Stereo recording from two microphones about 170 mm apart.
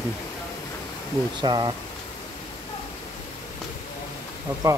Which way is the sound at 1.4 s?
30° right (ahead or behind).